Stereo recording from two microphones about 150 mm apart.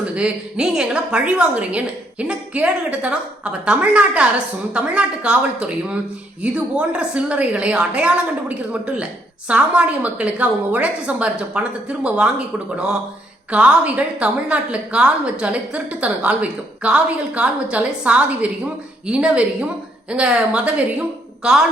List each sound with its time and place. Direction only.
0.0 s a woman's voice: 5° right (ahead or behind)
13.5 s a woman's voice: 10° right (ahead or behind)